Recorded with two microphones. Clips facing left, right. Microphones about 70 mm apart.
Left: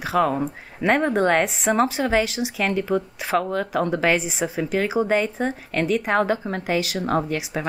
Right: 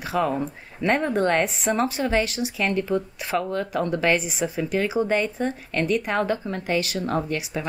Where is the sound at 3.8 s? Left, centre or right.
Left.